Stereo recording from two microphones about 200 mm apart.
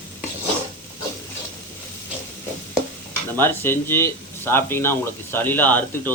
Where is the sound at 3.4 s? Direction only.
10° left (ahead or behind).